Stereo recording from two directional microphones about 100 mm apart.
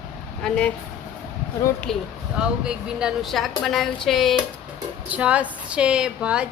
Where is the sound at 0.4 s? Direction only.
10° left (ahead or behind).